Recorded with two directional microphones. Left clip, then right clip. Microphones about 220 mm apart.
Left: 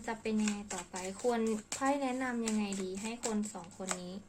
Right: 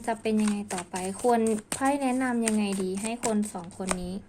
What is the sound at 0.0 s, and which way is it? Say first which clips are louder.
Speech: right 8 dB; 40° right (ahead or behind).